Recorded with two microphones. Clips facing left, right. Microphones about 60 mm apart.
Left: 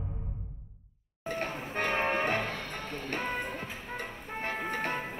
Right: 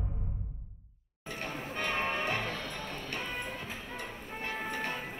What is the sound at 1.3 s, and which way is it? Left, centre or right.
Music, left.